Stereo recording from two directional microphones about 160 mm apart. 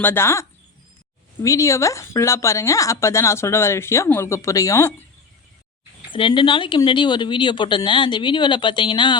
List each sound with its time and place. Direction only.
0.0 s speech: 15° left (ahead or behind)
6.1 s speech: 30° left (ahead or behind)